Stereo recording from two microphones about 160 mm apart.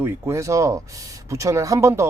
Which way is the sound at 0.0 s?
20° right (ahead or behind).